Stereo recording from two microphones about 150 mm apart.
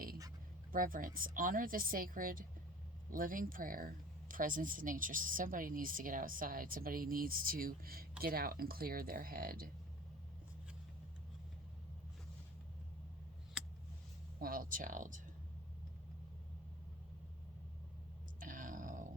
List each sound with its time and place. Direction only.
0.7 s speech: 70° right (ahead or behind)
14.3 s speech: 70° right (ahead or behind)
18.3 s burping: 65° right (ahead or behind)